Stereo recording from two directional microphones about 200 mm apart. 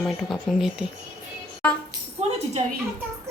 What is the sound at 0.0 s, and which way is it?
A woman's voice, centre (ahead or behind).